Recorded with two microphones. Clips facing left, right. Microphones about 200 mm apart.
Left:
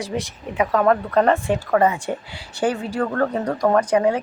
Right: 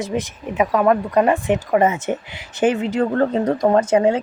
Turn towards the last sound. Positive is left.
turn(degrees=-25)  # may be behind; listen again after turning